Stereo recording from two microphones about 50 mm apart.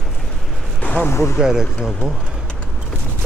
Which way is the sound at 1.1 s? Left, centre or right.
Left.